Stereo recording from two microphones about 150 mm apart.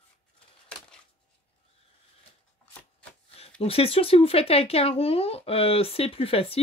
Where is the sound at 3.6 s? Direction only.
40° left (ahead or behind).